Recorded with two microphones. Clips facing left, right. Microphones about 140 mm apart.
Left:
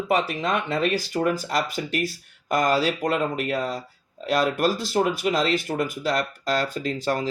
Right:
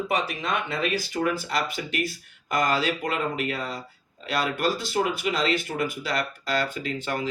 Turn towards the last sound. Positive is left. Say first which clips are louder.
# left 4 dB
turn(degrees=40)  # may be behind; listen again after turning